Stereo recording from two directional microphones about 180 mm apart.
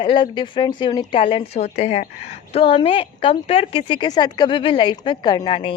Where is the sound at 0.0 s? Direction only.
25° left (ahead or behind).